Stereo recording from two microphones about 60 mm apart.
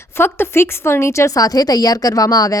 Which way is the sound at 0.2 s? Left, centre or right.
Left.